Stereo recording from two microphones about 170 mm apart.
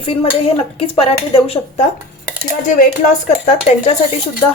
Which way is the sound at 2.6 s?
50° left (ahead or behind).